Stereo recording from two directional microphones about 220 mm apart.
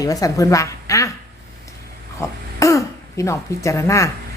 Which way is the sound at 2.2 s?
15° left (ahead or behind).